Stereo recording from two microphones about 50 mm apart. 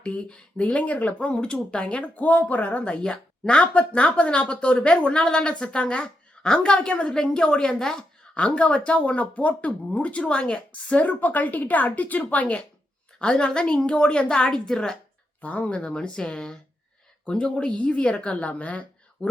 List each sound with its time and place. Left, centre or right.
0.0 s speech: left
11.0 s a woman's voice: left; by 14.9 s centre
15.4 s speech: left